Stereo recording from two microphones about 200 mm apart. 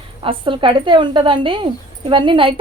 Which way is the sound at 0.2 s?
25° right (ahead or behind).